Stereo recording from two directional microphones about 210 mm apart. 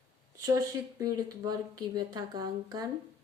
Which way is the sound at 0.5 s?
15° right (ahead or behind).